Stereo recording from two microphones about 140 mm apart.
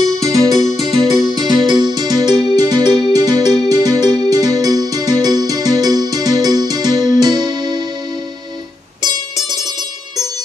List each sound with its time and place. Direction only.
0.2 s music: 25° right (ahead or behind)